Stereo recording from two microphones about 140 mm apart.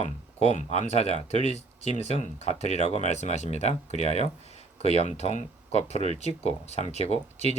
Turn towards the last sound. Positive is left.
turn(degrees=50)  # may be behind; listen again after turning